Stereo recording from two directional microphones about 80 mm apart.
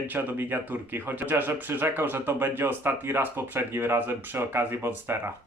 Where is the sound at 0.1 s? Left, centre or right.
Right.